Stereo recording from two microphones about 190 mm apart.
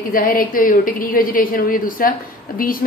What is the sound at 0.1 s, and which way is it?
A woman's voice, 50° left (ahead or behind).